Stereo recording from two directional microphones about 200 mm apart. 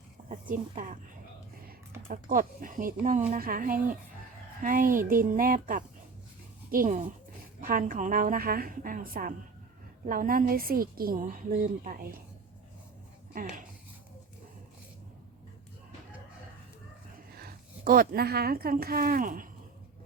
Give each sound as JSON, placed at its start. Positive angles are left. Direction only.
{"t": 0.3, "sound": "a woman's voice", "side_deg": -40}
{"t": 2.3, "sound": "a woman's voice", "side_deg": -45}
{"t": 13.3, "sound": "a woman's voice", "side_deg": -45}
{"t": 17.3, "sound": "a woman's voice", "side_deg": -45}